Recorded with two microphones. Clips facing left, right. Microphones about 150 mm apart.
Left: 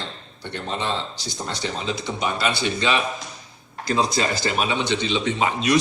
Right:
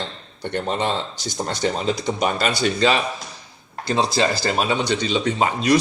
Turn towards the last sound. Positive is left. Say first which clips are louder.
# right 2 dB
turn(degrees=-40)  # may be behind; listen again after turning